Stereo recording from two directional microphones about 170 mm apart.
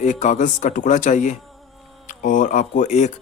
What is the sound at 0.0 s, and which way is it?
Speech, 45° left (ahead or behind).